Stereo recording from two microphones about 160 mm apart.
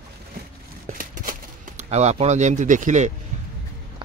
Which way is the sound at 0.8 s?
55° right (ahead or behind).